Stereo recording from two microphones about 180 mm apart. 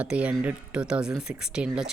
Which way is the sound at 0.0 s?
5° right (ahead or behind).